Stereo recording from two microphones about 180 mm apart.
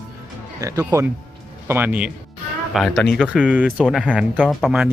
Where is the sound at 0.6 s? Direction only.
15° right (ahead or behind).